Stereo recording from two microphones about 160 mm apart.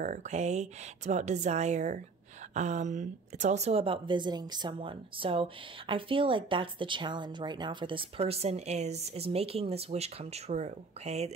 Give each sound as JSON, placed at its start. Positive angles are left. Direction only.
{"t": 0.0, "sound": "a woman's voice", "side_deg": -50}